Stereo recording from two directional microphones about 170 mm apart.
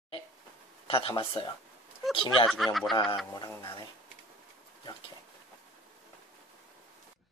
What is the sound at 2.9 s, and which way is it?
Speech, 25° left (ahead or behind).